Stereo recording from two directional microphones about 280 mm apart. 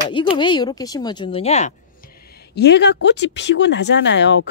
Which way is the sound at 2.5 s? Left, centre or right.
Left.